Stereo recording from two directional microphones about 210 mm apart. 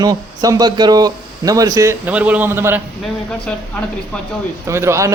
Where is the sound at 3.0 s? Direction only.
5° left (ahead or behind).